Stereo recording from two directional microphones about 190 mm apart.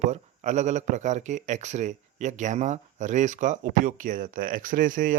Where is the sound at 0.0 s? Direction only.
40° right (ahead or behind).